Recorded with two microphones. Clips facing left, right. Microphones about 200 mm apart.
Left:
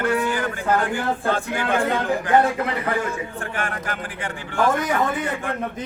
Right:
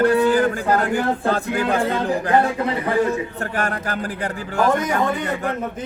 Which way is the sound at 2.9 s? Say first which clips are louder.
Right 6 dB; 35° right (ahead or behind).